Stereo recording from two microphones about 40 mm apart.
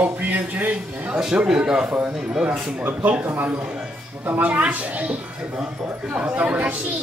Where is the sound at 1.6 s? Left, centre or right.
Right.